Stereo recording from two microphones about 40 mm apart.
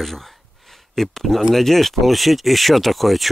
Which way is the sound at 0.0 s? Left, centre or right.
Centre.